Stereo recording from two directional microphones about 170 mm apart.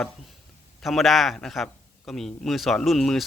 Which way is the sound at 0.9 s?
Centre (ahead or behind).